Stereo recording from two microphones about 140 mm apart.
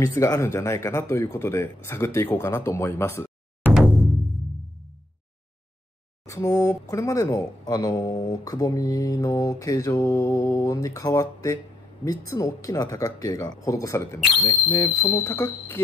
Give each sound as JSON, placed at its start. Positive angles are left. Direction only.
{"t": 0.0, "sound": "speech", "side_deg": 20}
{"t": 3.6, "sound": "music", "side_deg": -10}
{"t": 6.2, "sound": "speech", "side_deg": 20}